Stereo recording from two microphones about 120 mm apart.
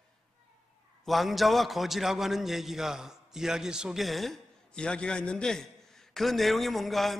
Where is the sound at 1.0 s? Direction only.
Centre (ahead or behind).